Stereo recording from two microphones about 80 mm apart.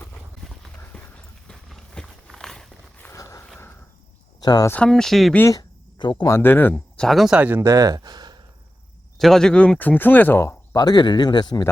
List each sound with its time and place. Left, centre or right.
0.4 s a sound: centre
0.9 s clip-clop: centre
1.5 s walk: centre
3.2 s a sound: left
4.4 s a sound: left
4.9 s speech: centre
6.0 s speech: left
6.2 s speech: left
6.7 s a sound: centre
7.3 s speech: centre
7.6 s speech: right
9.1 s speech: centre; by 10.8 s left
10.8 s speech: left